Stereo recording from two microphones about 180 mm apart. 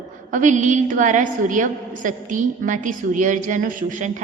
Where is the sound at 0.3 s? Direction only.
45° right (ahead or behind).